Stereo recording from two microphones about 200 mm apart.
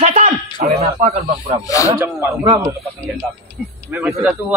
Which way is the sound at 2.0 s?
15° right (ahead or behind).